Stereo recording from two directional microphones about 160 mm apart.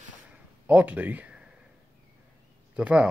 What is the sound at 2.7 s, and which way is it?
Speech, 5° right (ahead or behind).